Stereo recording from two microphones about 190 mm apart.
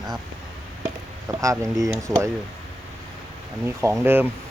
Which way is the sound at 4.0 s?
10° right (ahead or behind).